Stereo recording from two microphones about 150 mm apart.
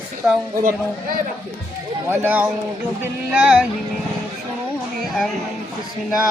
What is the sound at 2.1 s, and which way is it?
Speech, 10° right (ahead or behind).